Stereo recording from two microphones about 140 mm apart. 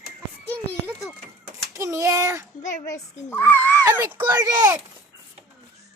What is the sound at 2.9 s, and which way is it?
Speech, 15° left (ahead or behind).